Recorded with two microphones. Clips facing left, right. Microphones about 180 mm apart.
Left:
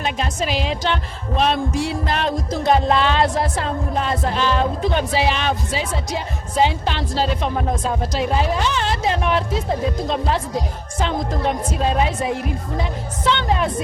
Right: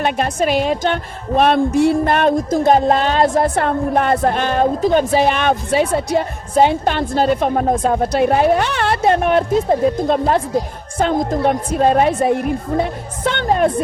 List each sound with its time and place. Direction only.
0.0 s music: 55° right (ahead or behind)